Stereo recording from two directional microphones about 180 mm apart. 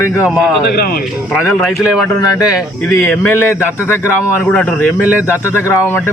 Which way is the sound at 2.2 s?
20° left (ahead or behind).